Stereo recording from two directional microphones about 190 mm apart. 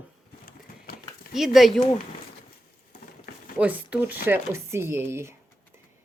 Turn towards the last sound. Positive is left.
turn(degrees=-10)  # may be behind; listen again after turning